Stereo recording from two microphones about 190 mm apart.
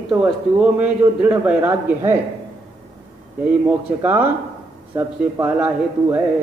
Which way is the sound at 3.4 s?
10° right (ahead or behind).